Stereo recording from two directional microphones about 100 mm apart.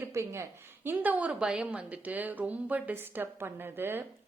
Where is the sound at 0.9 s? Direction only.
15° right (ahead or behind).